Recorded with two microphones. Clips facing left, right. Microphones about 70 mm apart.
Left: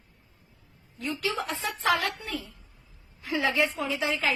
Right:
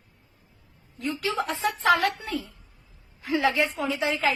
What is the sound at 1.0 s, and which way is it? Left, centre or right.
A woman's voice, right.